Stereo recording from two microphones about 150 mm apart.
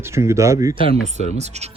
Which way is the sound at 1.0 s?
50° right (ahead or behind).